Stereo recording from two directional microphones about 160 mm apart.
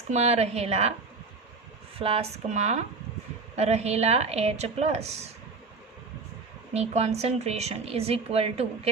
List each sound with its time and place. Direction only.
0.1 s speech: 40° right (ahead or behind)
2.0 s speech: 40° right (ahead or behind)
6.7 s speech: 45° right (ahead or behind)